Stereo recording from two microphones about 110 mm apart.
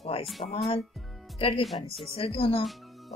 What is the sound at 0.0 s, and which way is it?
Music, 60° left (ahead or behind).